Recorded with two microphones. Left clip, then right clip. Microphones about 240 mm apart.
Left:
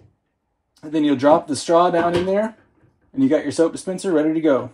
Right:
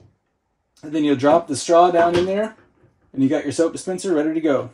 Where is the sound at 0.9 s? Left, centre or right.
Centre.